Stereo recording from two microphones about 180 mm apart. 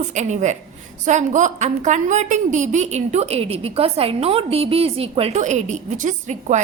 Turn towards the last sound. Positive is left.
turn(degrees=-40)  # may be behind; listen again after turning